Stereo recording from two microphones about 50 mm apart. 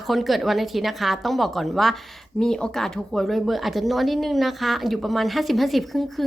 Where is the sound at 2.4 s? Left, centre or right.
Centre.